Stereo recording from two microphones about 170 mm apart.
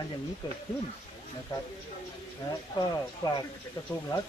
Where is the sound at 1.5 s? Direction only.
25° left (ahead or behind).